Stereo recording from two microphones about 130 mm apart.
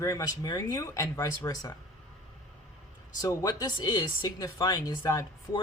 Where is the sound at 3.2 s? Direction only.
30° left (ahead or behind).